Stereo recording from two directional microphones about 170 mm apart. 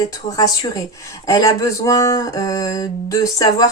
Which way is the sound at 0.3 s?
20° left (ahead or behind).